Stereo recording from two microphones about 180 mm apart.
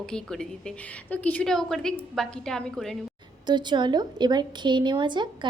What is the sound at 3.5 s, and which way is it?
A woman's voice, 25° right (ahead or behind).